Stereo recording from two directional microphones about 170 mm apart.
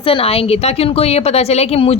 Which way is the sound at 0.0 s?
35° left (ahead or behind).